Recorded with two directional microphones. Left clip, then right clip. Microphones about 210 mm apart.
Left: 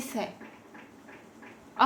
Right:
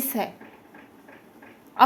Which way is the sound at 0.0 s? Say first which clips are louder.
Right 5 dB; 55° right (ahead or behind).